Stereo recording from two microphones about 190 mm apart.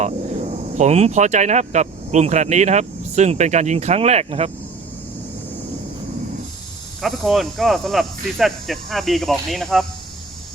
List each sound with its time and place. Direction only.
0.0 s speech: 40° right (ahead or behind)
7.0 s speech: centre (ahead or behind)